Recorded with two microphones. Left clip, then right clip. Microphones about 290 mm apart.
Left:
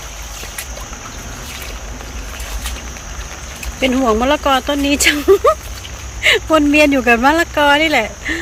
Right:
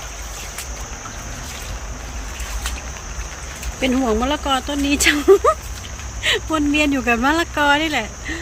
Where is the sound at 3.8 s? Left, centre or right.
Centre.